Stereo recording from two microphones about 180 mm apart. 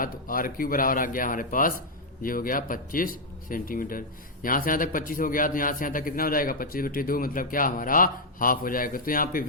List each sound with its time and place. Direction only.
0.0 s a man's voice: 50° left (ahead or behind)